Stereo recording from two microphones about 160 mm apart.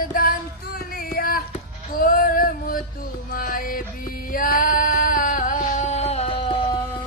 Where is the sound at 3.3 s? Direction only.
65° left (ahead or behind); by 6.9 s 30° left (ahead or behind).